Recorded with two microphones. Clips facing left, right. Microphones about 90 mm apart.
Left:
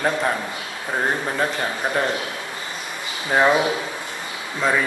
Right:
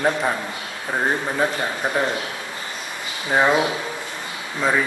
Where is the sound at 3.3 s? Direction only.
Centre (ahead or behind).